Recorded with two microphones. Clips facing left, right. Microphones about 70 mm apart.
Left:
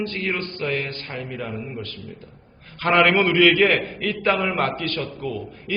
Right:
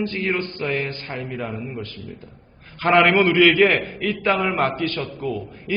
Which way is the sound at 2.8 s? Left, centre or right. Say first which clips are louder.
Right 2 dB; centre.